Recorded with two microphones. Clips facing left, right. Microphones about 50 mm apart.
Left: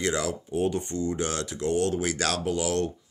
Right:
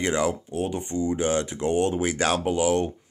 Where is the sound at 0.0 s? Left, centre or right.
Right.